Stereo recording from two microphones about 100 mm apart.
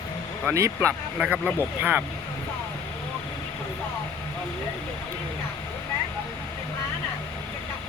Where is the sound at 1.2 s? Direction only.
15° right (ahead or behind).